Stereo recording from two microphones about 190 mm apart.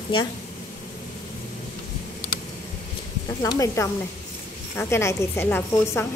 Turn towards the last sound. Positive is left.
turn(degrees=15)  # may be behind; listen again after turning